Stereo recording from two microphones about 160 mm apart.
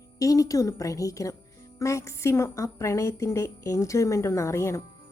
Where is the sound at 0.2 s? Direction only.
20° left (ahead or behind).